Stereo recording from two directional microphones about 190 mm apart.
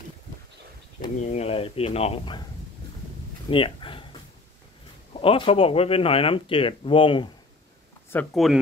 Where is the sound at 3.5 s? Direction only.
25° left (ahead or behind).